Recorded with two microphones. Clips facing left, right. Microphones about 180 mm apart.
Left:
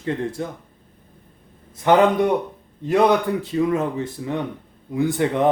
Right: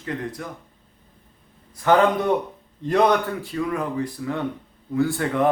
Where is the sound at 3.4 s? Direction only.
20° left (ahead or behind).